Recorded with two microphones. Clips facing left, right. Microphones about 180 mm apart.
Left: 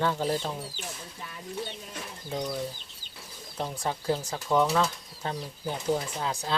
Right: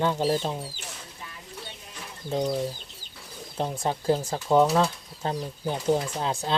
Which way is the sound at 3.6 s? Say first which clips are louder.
Right 4 dB; 30° right (ahead or behind).